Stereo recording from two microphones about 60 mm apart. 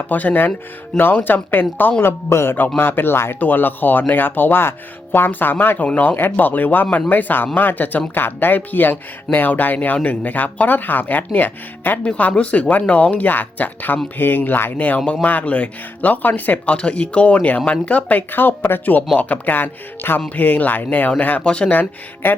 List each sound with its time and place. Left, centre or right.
0.1 s speech: left
12.0 s speech: centre
21.8 s speech: left